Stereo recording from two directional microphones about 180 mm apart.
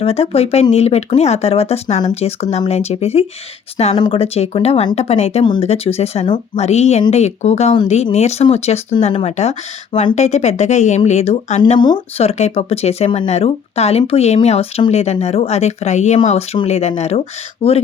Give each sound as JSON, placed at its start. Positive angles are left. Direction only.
{"t": 0.0, "sound": "speech", "side_deg": 35}
{"t": 11.8, "sound": "speech", "side_deg": 25}